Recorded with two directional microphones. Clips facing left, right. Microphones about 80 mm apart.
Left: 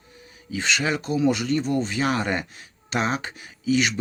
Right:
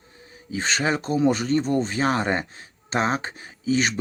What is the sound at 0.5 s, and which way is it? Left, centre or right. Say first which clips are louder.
Speech: right 1 dB; right.